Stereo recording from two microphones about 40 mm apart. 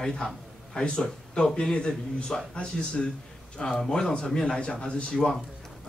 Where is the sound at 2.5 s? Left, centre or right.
Left.